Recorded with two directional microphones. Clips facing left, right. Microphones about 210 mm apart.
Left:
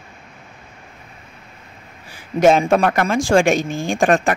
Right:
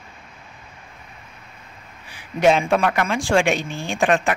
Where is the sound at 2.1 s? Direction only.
45° left (ahead or behind).